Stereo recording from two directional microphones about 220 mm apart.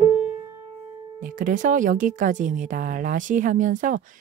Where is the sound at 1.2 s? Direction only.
35° right (ahead or behind).